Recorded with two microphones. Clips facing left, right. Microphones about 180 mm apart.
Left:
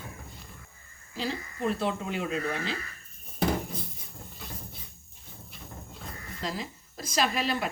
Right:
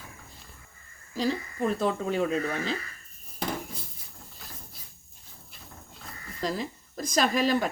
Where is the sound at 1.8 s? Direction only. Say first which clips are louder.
Right 4 dB; 40° right (ahead or behind).